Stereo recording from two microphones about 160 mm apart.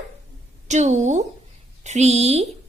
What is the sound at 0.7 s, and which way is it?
A woman's voice, 45° right (ahead or behind).